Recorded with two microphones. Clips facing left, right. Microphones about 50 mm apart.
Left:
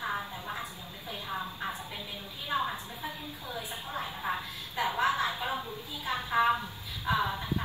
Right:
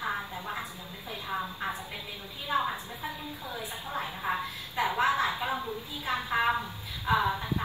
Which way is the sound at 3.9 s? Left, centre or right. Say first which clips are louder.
Right 2 dB; centre.